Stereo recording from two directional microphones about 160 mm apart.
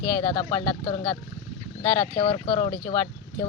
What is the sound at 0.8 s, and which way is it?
Speech, 30° left (ahead or behind).